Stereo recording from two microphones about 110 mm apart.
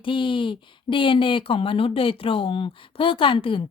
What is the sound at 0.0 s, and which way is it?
A woman's voice, 50° left (ahead or behind).